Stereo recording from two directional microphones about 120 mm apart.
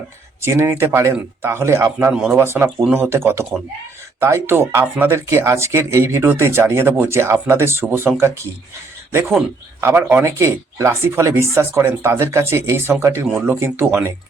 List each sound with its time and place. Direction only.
0.4 s speech: 20° right (ahead or behind)
9.8 s speech: 15° right (ahead or behind)